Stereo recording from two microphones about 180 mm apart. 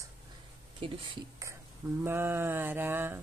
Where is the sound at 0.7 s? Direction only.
30° right (ahead or behind).